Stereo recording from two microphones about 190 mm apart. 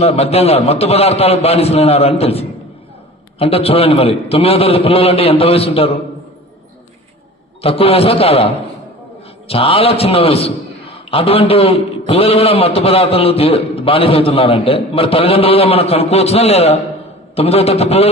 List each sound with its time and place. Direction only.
0.0 s a man's voice: 35° left (ahead or behind)
7.6 s a man's voice: 30° left (ahead or behind)
9.5 s a man's voice: 30° left (ahead or behind)